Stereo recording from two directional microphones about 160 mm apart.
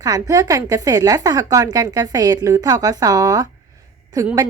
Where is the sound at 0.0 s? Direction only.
20° right (ahead or behind).